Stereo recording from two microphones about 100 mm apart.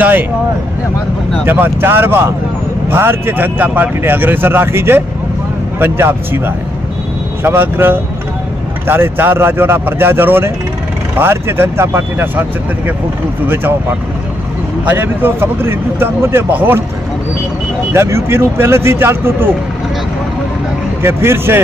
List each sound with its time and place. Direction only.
1.4 s speech: 20° right (ahead or behind)
14.9 s speech: 20° right (ahead or behind)
17.9 s speech: 25° right (ahead or behind)
21.0 s speech: 25° right (ahead or behind)